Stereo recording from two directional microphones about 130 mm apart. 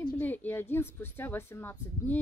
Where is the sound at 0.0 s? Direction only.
15° left (ahead or behind).